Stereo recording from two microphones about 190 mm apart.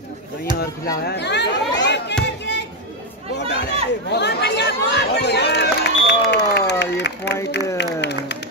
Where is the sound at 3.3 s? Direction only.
65° left (ahead or behind).